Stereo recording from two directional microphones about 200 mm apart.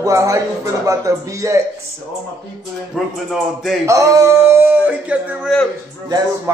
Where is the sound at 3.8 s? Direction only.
15° right (ahead or behind).